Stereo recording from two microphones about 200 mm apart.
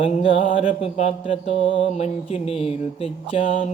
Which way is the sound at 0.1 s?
35° left (ahead or behind).